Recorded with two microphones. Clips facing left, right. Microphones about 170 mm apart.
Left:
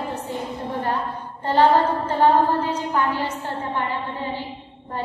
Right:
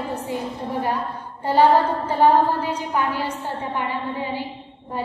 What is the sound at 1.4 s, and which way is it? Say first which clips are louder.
A woman's voice: right 1 dB; 10° right (ahead or behind).